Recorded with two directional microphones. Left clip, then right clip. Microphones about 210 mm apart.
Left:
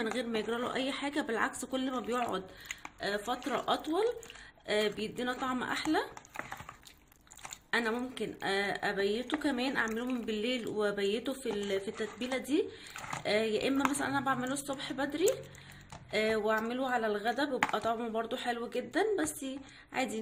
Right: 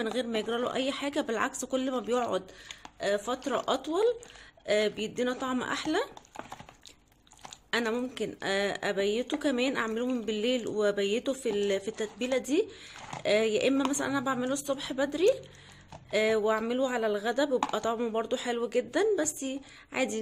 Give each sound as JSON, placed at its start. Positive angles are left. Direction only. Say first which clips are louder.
{"t": 0.0, "sound": "speech", "louder": "right 3 dB", "side_deg": -35}
{"t": 7.7, "sound": "speech", "louder": "right 2 dB", "side_deg": -35}